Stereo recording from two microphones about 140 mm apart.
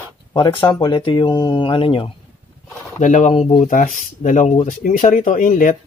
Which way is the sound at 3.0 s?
60° left (ahead or behind).